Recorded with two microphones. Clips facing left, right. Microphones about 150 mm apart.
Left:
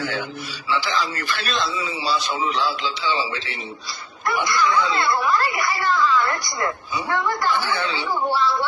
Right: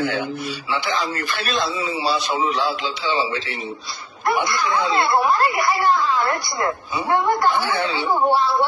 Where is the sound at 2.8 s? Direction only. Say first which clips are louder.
Right 2 dB; 30° right (ahead or behind).